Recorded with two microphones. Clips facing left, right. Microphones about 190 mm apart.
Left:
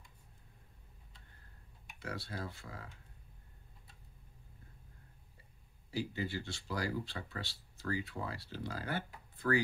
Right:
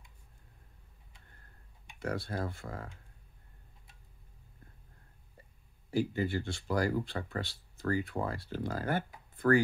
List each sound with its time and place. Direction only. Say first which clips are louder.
2.0 s speech: right 7 dB; 50° right (ahead or behind)
5.9 s speech: right 7 dB; 50° right (ahead or behind)